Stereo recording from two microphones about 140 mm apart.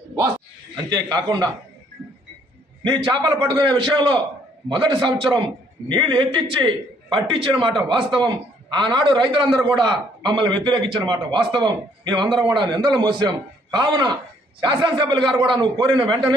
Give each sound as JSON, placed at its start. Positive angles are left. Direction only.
{"t": 1.1, "sound": "a man's voice", "side_deg": -30}
{"t": 2.8, "sound": "a man's voice", "side_deg": -30}